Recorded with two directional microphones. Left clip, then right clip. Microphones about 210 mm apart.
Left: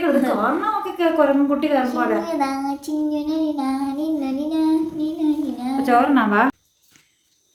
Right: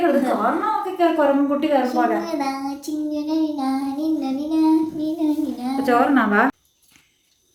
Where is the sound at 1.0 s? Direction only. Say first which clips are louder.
Left 1 dB; 15° left (ahead or behind).